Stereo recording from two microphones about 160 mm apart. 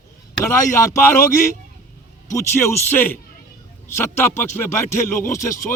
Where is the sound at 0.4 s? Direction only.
15° left (ahead or behind).